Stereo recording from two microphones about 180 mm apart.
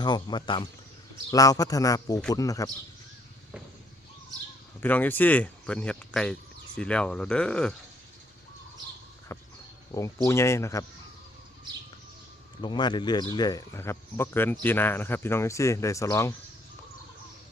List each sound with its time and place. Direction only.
0.0 s speech: 25° left (ahead or behind)
4.8 s speech: 10° left (ahead or behind)
9.3 s a sound: 15° left (ahead or behind)
10.2 s speech: 15° left (ahead or behind)
12.6 s speech: 25° left (ahead or behind)